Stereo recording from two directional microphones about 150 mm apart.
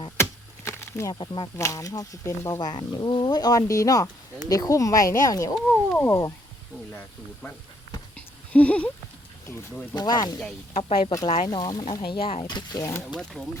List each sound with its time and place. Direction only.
0.2 s chop: 20° left (ahead or behind)
1.2 s speech: 30° left (ahead or behind)
5.5 s speech: 5° left (ahead or behind)
6.1 s speech: 20° left (ahead or behind)
8.1 s a sound: 10° left (ahead or behind)
9.9 s speech: 25° left (ahead or behind)
10.8 s speech: 45° left (ahead or behind)
11.4 s speech: 25° left (ahead or behind)
12.1 s speech: 35° left (ahead or behind)
13.1 s speech: centre (ahead or behind)